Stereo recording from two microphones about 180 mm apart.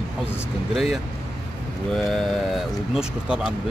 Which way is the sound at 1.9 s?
5° left (ahead or behind).